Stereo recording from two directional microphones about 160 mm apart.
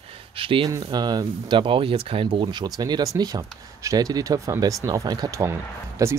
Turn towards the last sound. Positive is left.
turn(degrees=-20)  # may be behind; listen again after turning